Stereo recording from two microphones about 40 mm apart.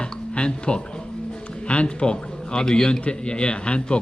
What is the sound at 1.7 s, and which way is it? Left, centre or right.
A man's voice, left.